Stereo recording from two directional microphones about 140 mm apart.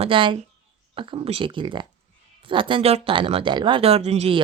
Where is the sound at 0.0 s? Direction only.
35° right (ahead or behind).